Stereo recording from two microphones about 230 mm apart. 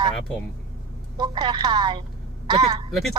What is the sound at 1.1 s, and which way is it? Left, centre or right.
Speech, centre.